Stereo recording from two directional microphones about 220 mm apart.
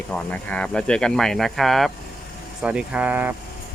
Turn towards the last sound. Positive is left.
turn(degrees=-10)  # may be behind; listen again after turning